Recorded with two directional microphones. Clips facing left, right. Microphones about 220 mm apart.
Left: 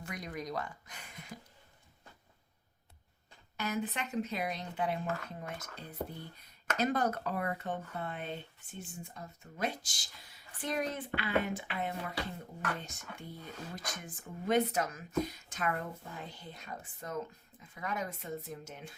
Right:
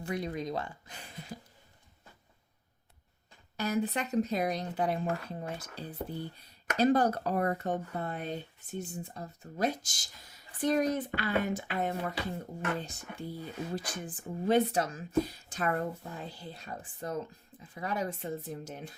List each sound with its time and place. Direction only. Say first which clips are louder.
0.0 s speech: right 7 dB; 30° right (ahead or behind)
3.6 s speech: right 5 dB; 35° right (ahead or behind)